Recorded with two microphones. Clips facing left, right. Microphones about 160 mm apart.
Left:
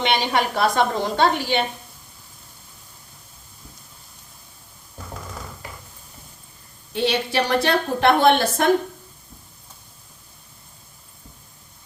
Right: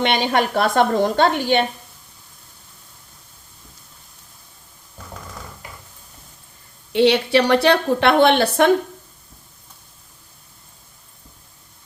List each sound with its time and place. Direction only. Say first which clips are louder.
0.0 s a woman's voice: right 2 dB; 55° right (ahead or behind)
6.9 s a woman's voice: right 7 dB; 75° right (ahead or behind)